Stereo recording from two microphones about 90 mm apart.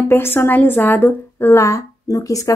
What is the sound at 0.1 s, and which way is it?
A woman's voice, 25° left (ahead or behind).